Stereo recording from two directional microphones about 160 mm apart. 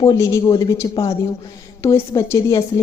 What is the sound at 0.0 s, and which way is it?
A woman's voice, 25° left (ahead or behind).